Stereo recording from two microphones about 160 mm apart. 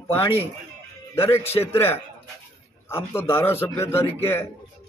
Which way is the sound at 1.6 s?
15° left (ahead or behind).